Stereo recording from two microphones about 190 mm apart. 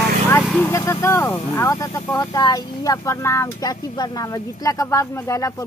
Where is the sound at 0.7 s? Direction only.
15° left (ahead or behind).